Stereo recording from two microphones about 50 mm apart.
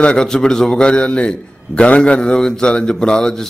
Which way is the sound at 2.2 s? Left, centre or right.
Centre.